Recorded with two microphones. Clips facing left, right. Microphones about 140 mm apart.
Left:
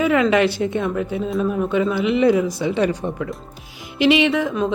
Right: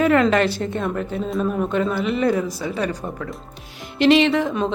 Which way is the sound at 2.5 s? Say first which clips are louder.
Left 5 dB; 25° left (ahead or behind).